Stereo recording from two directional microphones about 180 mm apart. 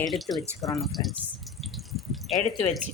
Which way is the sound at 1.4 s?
Centre (ahead or behind).